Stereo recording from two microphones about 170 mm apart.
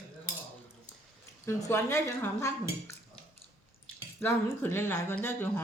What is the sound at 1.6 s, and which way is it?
A woman's voice, 15° left (ahead or behind).